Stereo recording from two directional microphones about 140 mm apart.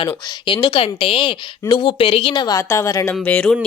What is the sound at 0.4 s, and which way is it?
Speech, 35° left (ahead or behind).